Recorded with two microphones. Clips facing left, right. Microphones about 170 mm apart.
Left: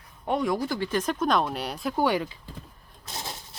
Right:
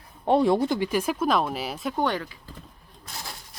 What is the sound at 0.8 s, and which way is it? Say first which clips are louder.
Speech: right 2 dB; 10° right (ahead or behind).